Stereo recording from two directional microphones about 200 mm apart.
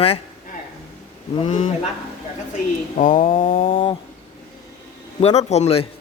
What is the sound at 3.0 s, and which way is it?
Speech, 40° left (ahead or behind).